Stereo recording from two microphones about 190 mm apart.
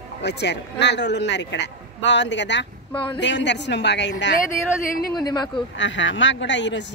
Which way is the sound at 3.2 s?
70° left (ahead or behind).